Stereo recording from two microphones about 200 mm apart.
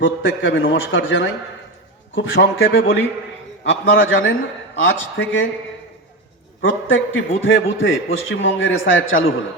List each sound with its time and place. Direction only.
0.0 s a man's voice: 70° left (ahead or behind)
6.6 s a man's voice: 70° left (ahead or behind)